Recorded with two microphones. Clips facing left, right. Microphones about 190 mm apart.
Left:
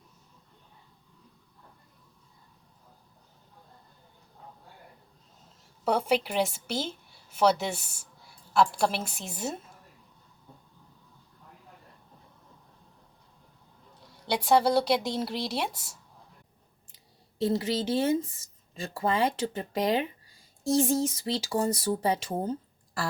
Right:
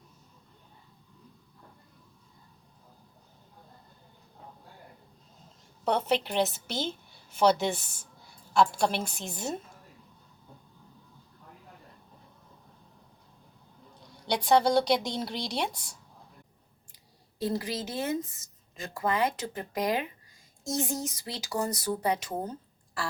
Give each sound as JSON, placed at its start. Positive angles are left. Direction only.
{"t": 5.8, "sound": "a woman's voice", "side_deg": 10}
{"t": 14.0, "sound": "speech", "side_deg": 5}
{"t": 17.4, "sound": "a woman's voice", "side_deg": 25}